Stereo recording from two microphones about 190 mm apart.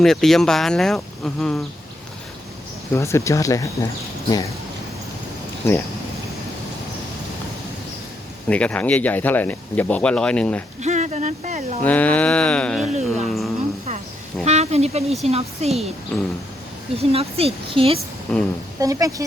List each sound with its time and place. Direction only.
0.0 s speech: centre (ahead or behind)
2.9 s speech: 15° left (ahead or behind)
8.4 s speech: 5° left (ahead or behind)
10.8 s speech: 40° right (ahead or behind)
11.8 s speech: 10° left (ahead or behind)
14.4 s speech: 35° right (ahead or behind)
16.1 s speech: 5° left (ahead or behind)
16.9 s speech: 30° right (ahead or behind)
18.3 s speech: 5° left (ahead or behind)
18.8 s a woman's voice: 15° right (ahead or behind)